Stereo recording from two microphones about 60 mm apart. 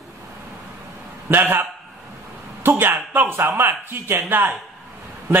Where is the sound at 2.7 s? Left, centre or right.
Right.